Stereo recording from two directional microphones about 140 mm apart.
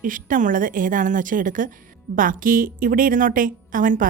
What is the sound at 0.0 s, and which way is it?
Speech, 75° right (ahead or behind).